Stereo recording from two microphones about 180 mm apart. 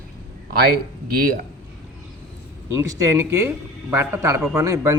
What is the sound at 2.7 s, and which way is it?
A man's voice, 20° right (ahead or behind).